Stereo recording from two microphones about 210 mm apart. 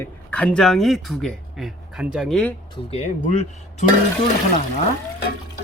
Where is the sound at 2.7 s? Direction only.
30° left (ahead or behind).